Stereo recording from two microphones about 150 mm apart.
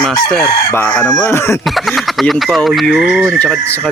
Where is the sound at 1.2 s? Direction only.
20° left (ahead or behind).